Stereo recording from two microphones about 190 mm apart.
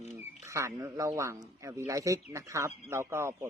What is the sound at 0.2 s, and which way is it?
Speech, 15° right (ahead or behind).